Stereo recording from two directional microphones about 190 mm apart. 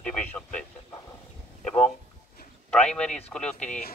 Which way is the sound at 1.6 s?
5° left (ahead or behind).